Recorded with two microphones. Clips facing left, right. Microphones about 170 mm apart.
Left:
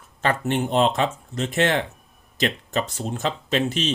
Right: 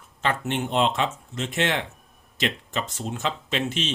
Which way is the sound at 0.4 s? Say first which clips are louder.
Left 4 dB; 40° left (ahead or behind).